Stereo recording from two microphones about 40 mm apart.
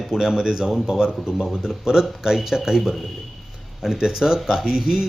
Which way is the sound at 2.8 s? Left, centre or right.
Centre.